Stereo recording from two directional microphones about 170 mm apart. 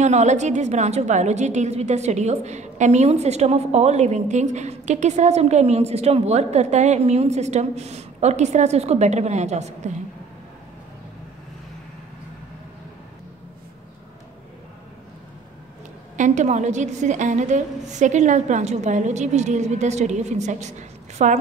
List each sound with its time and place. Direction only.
0.0 s a woman's voice: 45° right (ahead or behind)
16.2 s a woman's voice: 45° right (ahead or behind)